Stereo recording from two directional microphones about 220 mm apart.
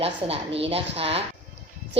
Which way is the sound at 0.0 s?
25° right (ahead or behind).